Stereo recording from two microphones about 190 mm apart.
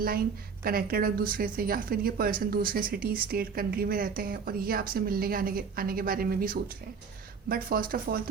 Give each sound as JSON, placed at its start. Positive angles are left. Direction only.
{"t": 0.6, "sound": "a woman's voice", "side_deg": -50}